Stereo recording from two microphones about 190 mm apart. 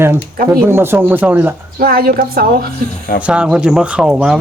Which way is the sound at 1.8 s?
50° right (ahead or behind).